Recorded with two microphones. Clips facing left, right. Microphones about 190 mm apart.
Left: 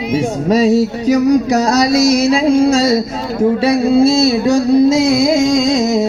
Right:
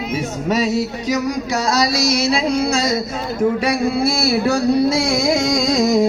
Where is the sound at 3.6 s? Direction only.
25° left (ahead or behind).